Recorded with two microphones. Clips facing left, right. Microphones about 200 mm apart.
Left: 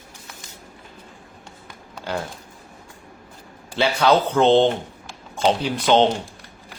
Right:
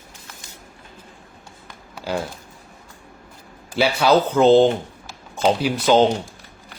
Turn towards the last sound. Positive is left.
turn(degrees=-5)  # may be behind; listen again after turning